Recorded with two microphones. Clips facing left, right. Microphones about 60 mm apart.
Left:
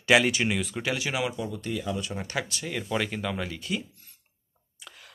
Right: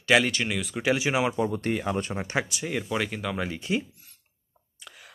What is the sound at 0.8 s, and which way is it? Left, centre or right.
Speech, centre.